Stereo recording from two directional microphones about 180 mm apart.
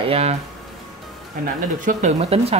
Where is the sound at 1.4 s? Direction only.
45° right (ahead or behind).